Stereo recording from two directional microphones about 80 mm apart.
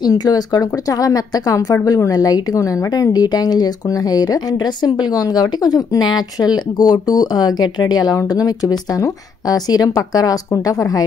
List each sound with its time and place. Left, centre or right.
0.0 s a woman's voice: left